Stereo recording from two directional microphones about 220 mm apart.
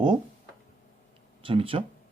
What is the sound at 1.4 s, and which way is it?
Speech, 25° right (ahead or behind).